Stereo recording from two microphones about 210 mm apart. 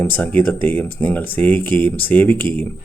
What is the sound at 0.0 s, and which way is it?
Speech, 10° left (ahead or behind).